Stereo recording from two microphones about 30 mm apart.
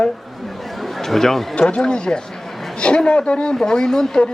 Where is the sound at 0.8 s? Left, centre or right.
Centre.